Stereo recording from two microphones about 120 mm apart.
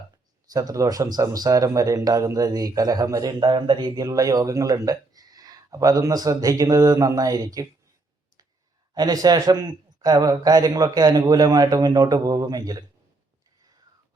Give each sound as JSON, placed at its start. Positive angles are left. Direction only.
{"t": 0.5, "sound": "speech", "side_deg": -30}
{"t": 9.0, "sound": "speech", "side_deg": -35}